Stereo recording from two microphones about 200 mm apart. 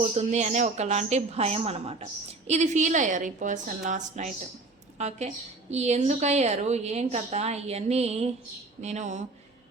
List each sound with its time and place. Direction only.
0.0 s a woman's voice: 35° right (ahead or behind)